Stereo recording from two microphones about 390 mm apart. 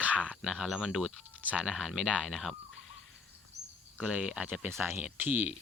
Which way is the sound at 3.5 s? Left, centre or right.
Right.